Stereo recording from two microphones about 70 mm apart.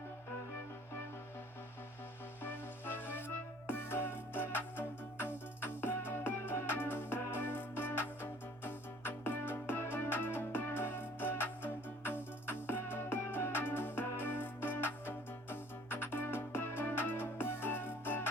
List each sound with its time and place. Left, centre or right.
2.4 s music: left